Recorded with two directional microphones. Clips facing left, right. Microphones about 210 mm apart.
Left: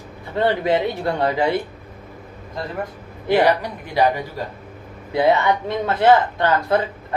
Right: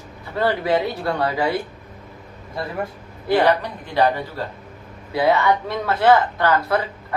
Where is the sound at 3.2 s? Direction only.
15° left (ahead or behind).